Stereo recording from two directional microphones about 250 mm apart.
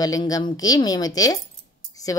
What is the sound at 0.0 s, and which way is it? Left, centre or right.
Speech, centre.